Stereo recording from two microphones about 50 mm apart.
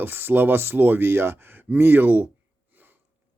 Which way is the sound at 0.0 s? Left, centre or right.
Right.